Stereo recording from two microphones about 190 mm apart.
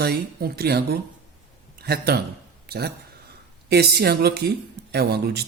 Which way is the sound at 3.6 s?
60° right (ahead or behind).